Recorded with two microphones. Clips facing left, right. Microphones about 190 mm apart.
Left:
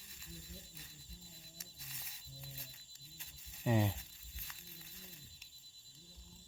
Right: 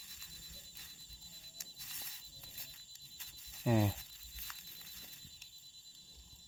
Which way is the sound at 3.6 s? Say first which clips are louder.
Right 2 dB; centre (ahead or behind).